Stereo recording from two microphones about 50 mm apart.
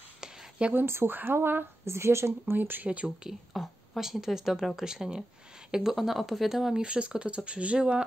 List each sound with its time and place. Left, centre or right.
0.2 s a sound: right
0.7 s a woman's voice: right
2.5 s speech: right
3.3 s a woman's voice: centre
6.8 s speech: right